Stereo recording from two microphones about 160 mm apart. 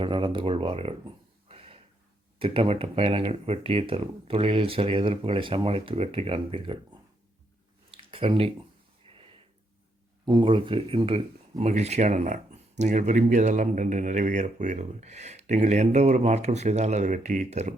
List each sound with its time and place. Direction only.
0.0 s speech: 30° right (ahead or behind)
7.9 s a sound: 35° right (ahead or behind)
10.2 s speech: 30° right (ahead or behind); by 17.7 s 50° right (ahead or behind)